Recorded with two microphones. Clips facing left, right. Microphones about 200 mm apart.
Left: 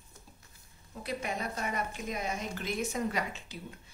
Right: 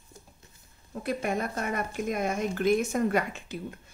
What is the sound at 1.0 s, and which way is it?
Speech, 50° right (ahead or behind).